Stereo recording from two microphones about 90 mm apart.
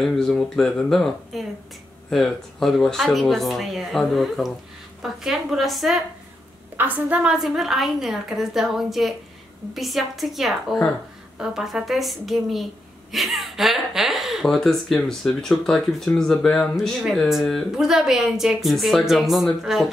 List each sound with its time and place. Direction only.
0.0 s a woman's voice: 5° left (ahead or behind)
6.8 s a woman's voice: 15° right (ahead or behind)
7.3 s a woman's voice: 5° right (ahead or behind)